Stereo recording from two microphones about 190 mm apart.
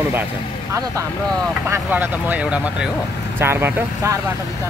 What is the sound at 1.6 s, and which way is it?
Speech, 10° right (ahead or behind).